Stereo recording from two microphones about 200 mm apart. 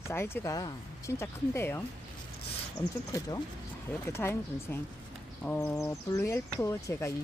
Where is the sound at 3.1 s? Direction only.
20° left (ahead or behind).